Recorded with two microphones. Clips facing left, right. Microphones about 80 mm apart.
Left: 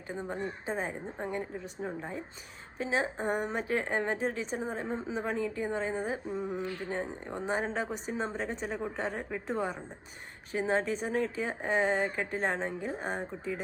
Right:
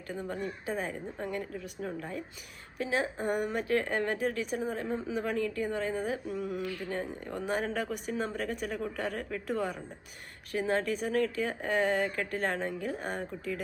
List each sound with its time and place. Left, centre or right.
0.1 s speech: left